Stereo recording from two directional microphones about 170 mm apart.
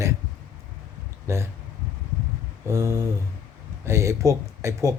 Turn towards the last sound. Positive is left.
turn(degrees=-15)  # may be behind; listen again after turning